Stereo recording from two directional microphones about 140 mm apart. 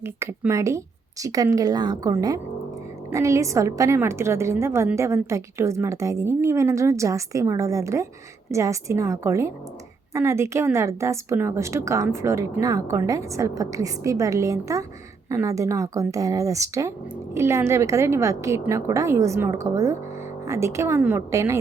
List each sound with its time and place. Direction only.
0.0 s a woman's voice: 15° right (ahead or behind)